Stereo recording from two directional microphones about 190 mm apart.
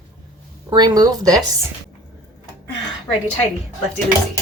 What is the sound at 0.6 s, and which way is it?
Speech, 20° right (ahead or behind).